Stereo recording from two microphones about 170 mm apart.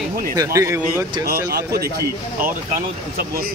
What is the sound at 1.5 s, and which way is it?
Speech, 65° right (ahead or behind).